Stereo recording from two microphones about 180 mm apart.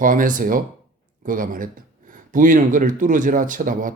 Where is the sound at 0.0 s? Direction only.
50° right (ahead or behind).